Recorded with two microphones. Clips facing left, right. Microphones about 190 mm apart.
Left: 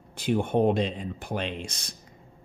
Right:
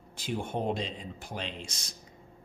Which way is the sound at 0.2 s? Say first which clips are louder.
Left 9 dB; 60° left (ahead or behind).